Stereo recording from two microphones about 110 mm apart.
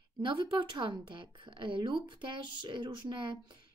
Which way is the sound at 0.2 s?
45° right (ahead or behind).